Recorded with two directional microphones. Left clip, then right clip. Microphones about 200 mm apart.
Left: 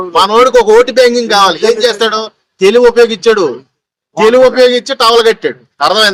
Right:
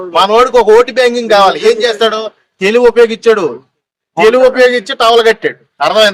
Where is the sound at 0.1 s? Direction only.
15° right (ahead or behind).